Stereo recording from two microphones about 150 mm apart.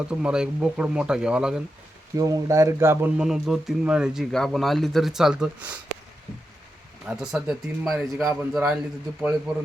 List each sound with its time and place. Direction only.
0.1 s speech: 5° right (ahead or behind)
2.1 s speech: 20° right (ahead or behind)
3.2 s speech: 5° right (ahead or behind)
7.1 s speech: 5° right (ahead or behind)